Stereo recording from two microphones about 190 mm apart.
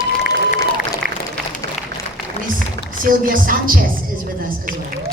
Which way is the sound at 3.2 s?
45° right (ahead or behind).